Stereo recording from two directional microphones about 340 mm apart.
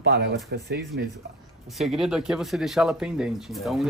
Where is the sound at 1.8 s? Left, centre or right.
Centre.